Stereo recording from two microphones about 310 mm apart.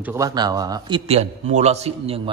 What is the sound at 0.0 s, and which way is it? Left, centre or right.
A man's voice, centre.